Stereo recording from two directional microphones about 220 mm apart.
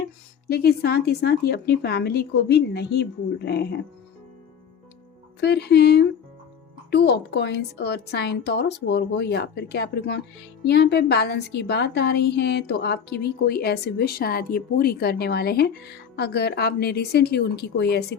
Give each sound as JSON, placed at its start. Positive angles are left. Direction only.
{"t": 0.4, "sound": "a woman's voice", "side_deg": 45}
{"t": 5.4, "sound": "a woman's voice", "side_deg": 50}